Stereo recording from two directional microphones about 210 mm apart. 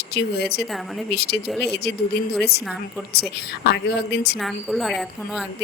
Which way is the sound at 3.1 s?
50° left (ahead or behind).